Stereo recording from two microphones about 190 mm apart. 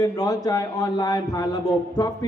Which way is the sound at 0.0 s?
20° left (ahead or behind).